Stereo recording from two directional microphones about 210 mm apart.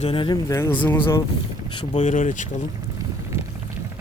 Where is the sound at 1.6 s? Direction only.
25° left (ahead or behind).